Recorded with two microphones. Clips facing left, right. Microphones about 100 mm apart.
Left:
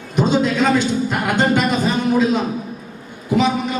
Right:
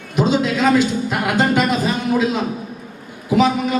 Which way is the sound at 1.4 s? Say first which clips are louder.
Even; 5° right (ahead or behind).